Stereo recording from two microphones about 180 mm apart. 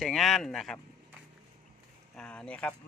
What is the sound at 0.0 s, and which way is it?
Speech, centre (ahead or behind).